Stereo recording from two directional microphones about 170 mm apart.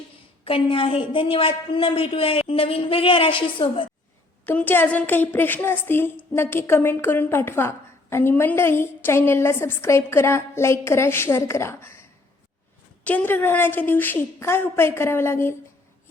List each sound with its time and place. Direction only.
0.4 s a woman's voice: 30° left (ahead or behind)
4.4 s a woman's voice: 10° left (ahead or behind)
13.1 s a woman's voice: 10° left (ahead or behind)